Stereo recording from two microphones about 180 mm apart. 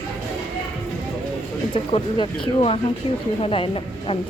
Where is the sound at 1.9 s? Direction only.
30° left (ahead or behind).